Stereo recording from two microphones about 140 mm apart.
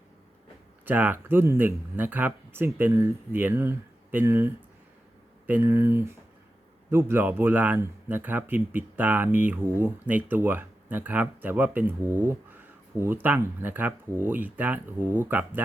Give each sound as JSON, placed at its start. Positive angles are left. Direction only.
{"t": 0.9, "sound": "speech", "side_deg": -10}